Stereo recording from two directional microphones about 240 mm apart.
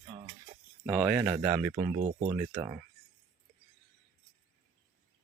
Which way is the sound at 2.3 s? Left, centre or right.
Centre.